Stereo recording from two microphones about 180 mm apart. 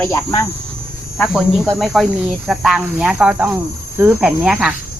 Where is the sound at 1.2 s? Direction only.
5° right (ahead or behind).